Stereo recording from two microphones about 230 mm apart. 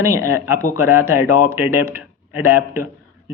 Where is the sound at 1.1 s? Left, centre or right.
Left.